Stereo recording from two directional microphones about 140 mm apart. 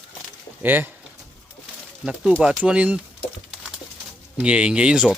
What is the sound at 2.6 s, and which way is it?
Speech, 10° right (ahead or behind).